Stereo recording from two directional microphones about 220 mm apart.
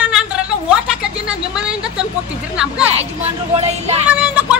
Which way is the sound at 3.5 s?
30° right (ahead or behind).